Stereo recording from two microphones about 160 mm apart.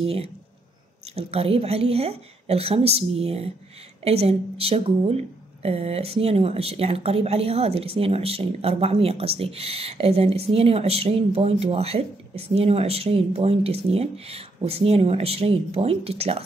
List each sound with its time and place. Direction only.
0.0 s speech: 40° right (ahead or behind)